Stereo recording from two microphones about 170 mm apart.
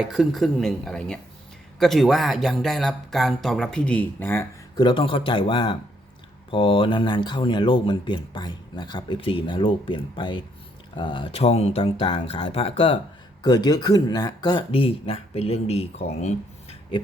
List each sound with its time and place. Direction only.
0.0 s speech: centre (ahead or behind)
4.8 s speech: 30° left (ahead or behind)